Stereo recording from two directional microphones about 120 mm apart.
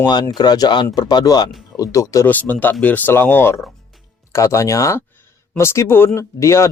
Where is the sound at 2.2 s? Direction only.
15° left (ahead or behind).